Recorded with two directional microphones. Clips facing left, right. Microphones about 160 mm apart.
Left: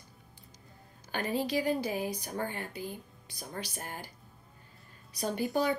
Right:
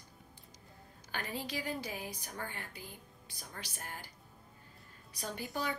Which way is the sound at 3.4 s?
30° left (ahead or behind).